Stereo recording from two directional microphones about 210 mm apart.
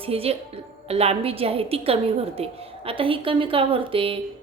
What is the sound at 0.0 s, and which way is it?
A woman's voice, 30° right (ahead or behind).